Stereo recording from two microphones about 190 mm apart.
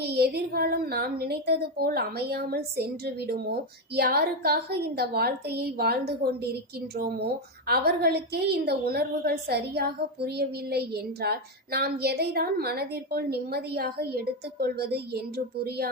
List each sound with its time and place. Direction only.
0.0 s a woman's voice: 55° right (ahead or behind)